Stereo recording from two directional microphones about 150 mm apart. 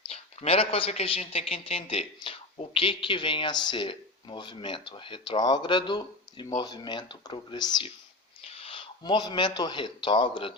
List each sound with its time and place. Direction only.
0.0 s speech: 40° left (ahead or behind)